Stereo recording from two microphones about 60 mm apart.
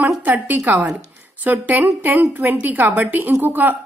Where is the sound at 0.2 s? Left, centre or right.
Right.